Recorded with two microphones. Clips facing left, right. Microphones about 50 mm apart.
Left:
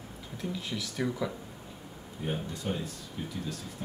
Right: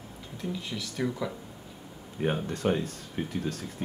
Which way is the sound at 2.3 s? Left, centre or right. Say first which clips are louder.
Right 4 dB; right.